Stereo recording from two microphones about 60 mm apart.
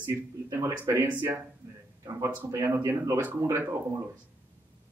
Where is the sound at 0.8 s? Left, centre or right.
Right.